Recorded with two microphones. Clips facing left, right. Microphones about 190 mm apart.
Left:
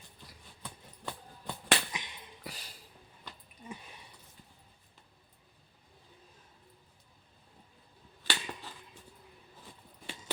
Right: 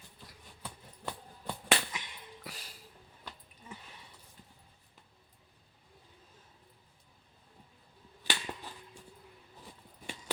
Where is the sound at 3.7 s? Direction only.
15° left (ahead or behind).